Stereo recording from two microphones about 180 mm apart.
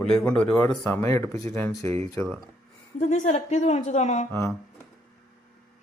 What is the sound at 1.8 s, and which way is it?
Speech, 35° right (ahead or behind).